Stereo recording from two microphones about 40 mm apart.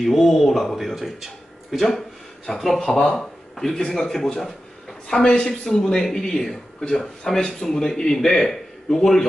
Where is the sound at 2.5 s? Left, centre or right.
Centre.